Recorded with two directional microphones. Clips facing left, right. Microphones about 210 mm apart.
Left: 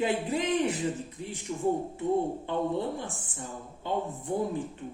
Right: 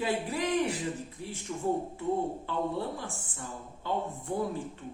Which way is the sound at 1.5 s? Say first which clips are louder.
Left 2 dB; 25° left (ahead or behind).